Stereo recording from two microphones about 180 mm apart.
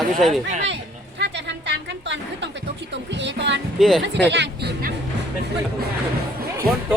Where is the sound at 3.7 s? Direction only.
Centre (ahead or behind).